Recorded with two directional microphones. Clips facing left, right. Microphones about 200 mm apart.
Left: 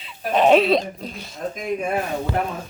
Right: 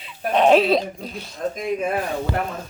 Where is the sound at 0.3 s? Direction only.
Centre (ahead or behind).